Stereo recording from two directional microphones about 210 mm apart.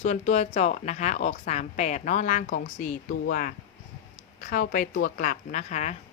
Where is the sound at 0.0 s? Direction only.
35° left (ahead or behind).